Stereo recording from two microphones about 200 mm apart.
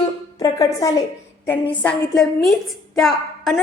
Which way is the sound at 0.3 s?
15° left (ahead or behind).